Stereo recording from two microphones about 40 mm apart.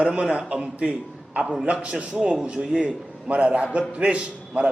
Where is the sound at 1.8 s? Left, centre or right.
Right.